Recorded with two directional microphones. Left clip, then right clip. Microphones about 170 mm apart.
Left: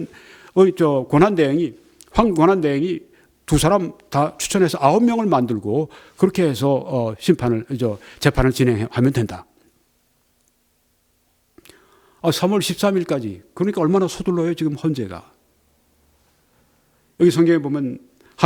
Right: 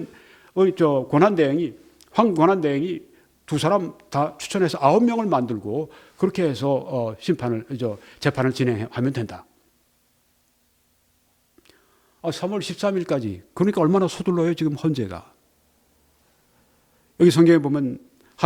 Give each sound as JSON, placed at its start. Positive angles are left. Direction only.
{"t": 0.1, "sound": "a man's voice", "side_deg": 20}
{"t": 11.5, "sound": "whispering", "side_deg": 20}
{"t": 13.1, "sound": "speech", "side_deg": -5}
{"t": 13.5, "sound": "speech", "side_deg": -20}
{"t": 13.9, "sound": "speech", "side_deg": 0}
{"t": 17.2, "sound": "a man's voice", "side_deg": -15}
{"t": 18.2, "sound": "a sound", "side_deg": 10}